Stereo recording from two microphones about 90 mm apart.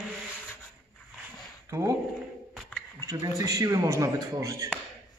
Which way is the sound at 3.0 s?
35° right (ahead or behind).